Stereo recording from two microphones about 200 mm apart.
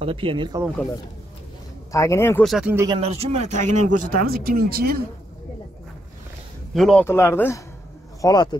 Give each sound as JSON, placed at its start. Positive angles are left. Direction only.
{"t": 0.0, "sound": "speech", "side_deg": -25}
{"t": 1.9, "sound": "speech", "side_deg": 15}
{"t": 2.4, "sound": "speech", "side_deg": 0}
{"t": 2.7, "sound": "speech", "side_deg": -15}
{"t": 3.0, "sound": "speech", "side_deg": -30}
{"t": 6.7, "sound": "speech", "side_deg": 0}